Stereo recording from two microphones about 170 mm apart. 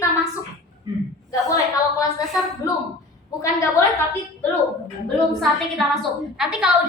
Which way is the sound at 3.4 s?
15° left (ahead or behind).